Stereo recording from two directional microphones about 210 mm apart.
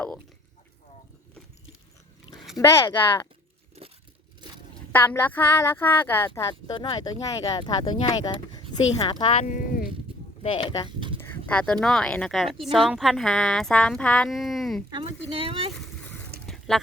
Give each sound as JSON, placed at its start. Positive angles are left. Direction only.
{"t": 2.6, "sound": "speech", "side_deg": 15}
{"t": 4.4, "sound": "a sound", "side_deg": -20}
{"t": 4.9, "sound": "speech", "side_deg": 10}
{"t": 9.4, "sound": "speech", "side_deg": 40}
{"t": 10.4, "sound": "speech", "side_deg": 25}
{"t": 10.8, "sound": "a sound", "side_deg": -25}
{"t": 11.2, "sound": "speech", "side_deg": 10}
{"t": 15.3, "sound": "speech", "side_deg": -25}
{"t": 16.5, "sound": "a sound", "side_deg": 0}